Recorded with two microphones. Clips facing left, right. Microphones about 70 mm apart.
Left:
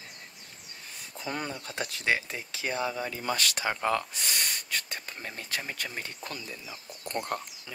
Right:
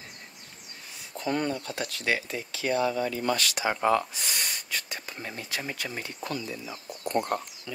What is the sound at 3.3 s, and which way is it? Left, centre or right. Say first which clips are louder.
Speech: right 1 dB; left.